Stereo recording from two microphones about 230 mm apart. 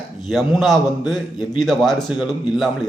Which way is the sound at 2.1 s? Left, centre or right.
Centre.